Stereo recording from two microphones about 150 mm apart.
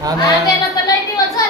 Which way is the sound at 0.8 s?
25° left (ahead or behind).